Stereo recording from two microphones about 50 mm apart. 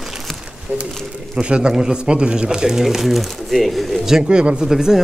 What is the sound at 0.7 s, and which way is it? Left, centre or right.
Speech, right.